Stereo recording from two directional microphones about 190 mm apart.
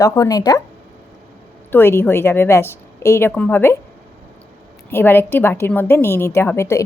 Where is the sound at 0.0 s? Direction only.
20° left (ahead or behind).